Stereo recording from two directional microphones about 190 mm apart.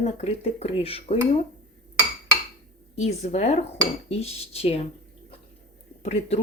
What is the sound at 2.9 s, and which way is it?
Speech, 35° left (ahead or behind).